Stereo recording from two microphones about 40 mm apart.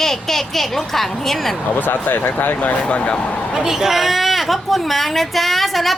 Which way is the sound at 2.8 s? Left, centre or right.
Left.